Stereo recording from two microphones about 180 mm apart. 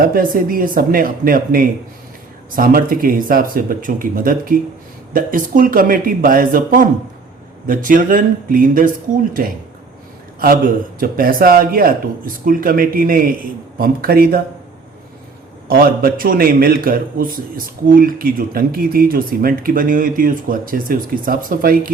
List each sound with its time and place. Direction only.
0.0 s a man's voice: 50° right (ahead or behind)
11.0 s a man's voice: 55° right (ahead or behind)
15.7 s a man's voice: 55° right (ahead or behind)